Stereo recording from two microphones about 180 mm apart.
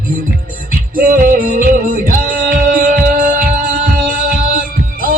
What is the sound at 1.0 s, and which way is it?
Music, 50° right (ahead or behind).